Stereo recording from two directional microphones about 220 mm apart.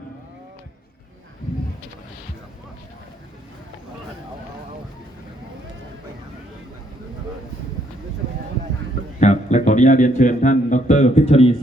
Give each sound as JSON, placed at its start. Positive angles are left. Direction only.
{"t": 9.2, "sound": "speech", "side_deg": 30}